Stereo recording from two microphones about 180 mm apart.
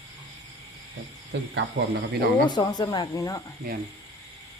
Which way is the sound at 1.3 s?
70° right (ahead or behind).